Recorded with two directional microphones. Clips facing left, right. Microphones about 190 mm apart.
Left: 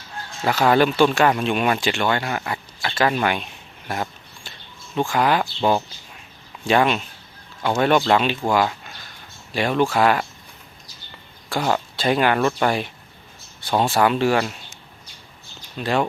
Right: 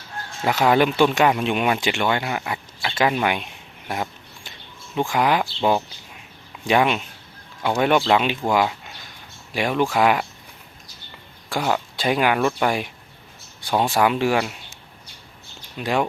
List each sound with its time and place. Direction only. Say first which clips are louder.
0.4 s speech: left 1 dB; 15° right (ahead or behind)
6.7 s speech: left 1 dB; 15° right (ahead or behind)
9.6 s speech: left 1 dB; 10° right (ahead or behind)
11.6 s speech: left 1 dB; 10° right (ahead or behind)
15.8 s speech: left 1 dB; 15° right (ahead or behind)